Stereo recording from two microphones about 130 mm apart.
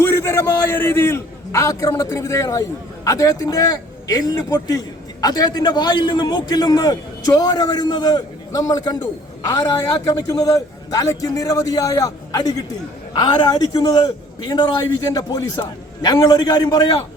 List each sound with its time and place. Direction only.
0.0 s a man's voice: 20° left (ahead or behind)